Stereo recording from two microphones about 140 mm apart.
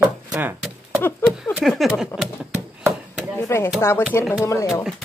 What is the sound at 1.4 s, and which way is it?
Speech, centre (ahead or behind).